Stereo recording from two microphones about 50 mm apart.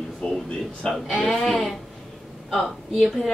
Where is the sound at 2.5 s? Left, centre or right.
Centre.